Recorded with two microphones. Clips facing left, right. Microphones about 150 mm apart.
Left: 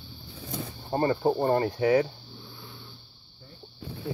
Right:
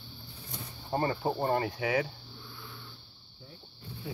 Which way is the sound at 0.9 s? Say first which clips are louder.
Left 6 dB; 35° left (ahead or behind).